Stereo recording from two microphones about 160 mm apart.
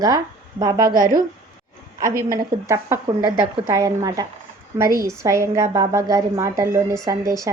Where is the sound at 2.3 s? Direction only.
20° right (ahead or behind).